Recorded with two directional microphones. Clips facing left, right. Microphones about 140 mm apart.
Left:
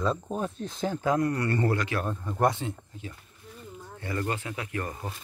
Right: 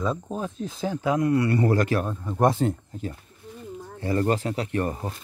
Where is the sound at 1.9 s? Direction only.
35° right (ahead or behind).